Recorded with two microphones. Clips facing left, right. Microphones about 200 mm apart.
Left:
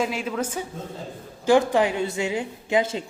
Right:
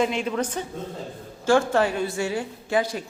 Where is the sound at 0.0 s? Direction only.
5° left (ahead or behind).